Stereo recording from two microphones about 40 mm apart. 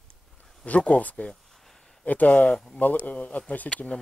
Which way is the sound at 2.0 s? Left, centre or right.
Left.